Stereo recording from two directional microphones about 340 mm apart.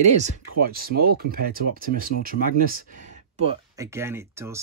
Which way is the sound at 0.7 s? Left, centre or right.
Right.